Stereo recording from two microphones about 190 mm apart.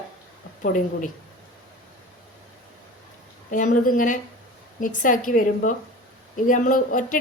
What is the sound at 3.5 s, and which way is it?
A woman's voice, 45° left (ahead or behind).